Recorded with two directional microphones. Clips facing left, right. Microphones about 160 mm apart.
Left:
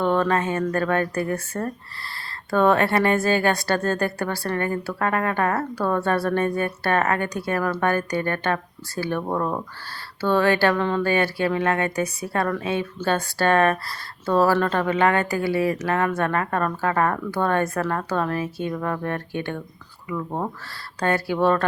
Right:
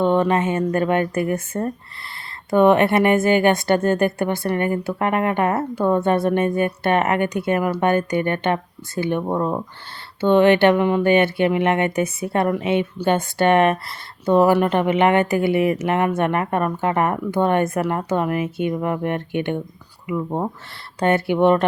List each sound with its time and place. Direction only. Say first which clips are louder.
0.0 s speech: right 3 dB; 20° right (ahead or behind)